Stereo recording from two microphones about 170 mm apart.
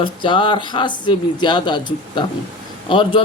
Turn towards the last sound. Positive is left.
turn(degrees=30)  # may be behind; listen again after turning